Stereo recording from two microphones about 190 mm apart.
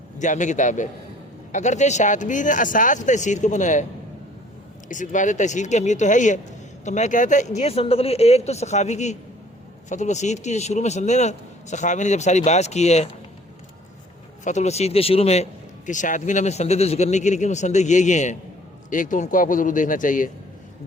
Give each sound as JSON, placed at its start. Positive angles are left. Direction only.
{"t": 0.2, "sound": "a man's voice", "side_deg": 40}
{"t": 4.9, "sound": "a man's voice", "side_deg": 40}
{"t": 14.4, "sound": "a man's voice", "side_deg": 35}